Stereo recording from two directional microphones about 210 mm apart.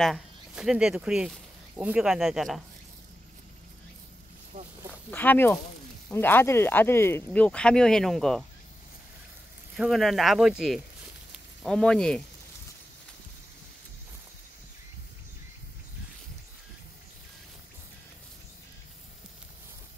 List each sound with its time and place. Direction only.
0.0 s speech: centre (ahead or behind)
4.5 s a sound: 40° right (ahead or behind)
5.1 s speech: 10° left (ahead or behind)
9.8 s speech: centre (ahead or behind)